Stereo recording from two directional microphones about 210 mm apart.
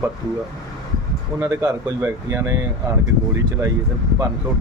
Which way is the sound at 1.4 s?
15° right (ahead or behind).